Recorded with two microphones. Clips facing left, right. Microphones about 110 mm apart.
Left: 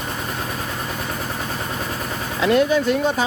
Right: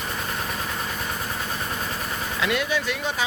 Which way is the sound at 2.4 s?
35° left (ahead or behind).